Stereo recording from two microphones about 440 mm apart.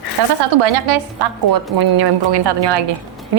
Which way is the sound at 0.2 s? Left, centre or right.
Right.